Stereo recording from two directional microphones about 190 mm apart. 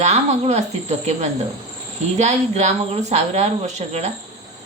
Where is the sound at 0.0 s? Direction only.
35° right (ahead or behind).